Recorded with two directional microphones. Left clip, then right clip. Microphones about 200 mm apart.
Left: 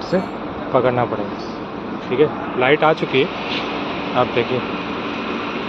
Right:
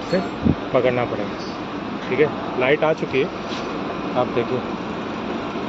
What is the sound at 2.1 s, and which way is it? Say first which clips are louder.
Speech: left 3 dB; 10° left (ahead or behind).